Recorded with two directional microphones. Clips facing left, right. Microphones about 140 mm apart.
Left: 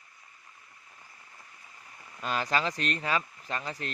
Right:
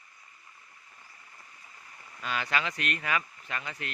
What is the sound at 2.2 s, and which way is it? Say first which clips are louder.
Speech: left 2 dB; 40° left (ahead or behind).